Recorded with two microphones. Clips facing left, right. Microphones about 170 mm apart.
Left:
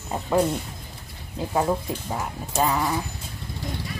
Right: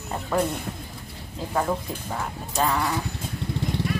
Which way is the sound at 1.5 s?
10° left (ahead or behind).